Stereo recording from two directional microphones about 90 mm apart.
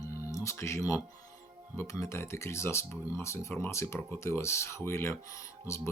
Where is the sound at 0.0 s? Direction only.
40° left (ahead or behind).